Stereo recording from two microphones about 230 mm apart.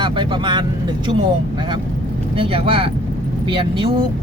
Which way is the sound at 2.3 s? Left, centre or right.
Right.